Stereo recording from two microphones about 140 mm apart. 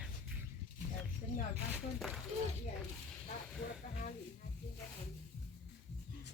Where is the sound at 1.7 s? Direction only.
Centre (ahead or behind).